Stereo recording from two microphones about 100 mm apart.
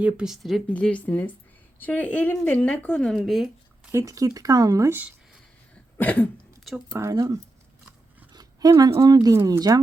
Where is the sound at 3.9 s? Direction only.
30° right (ahead or behind).